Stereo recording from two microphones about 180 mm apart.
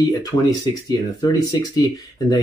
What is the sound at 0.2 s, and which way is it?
Speech, 20° left (ahead or behind).